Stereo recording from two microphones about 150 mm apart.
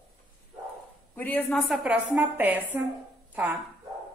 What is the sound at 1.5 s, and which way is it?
A woman's voice, centre (ahead or behind).